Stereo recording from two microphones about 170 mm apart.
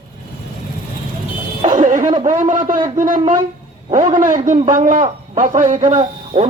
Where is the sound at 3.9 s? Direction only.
45° right (ahead or behind).